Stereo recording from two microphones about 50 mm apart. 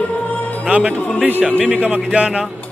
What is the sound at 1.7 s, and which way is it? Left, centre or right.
Speech, right.